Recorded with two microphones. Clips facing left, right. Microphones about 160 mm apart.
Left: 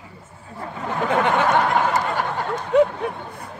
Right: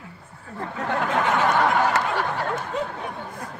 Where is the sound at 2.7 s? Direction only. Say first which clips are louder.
Left 16 dB; 70° left (ahead or behind).